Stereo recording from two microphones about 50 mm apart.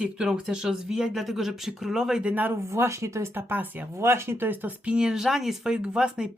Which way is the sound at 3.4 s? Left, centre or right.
Right.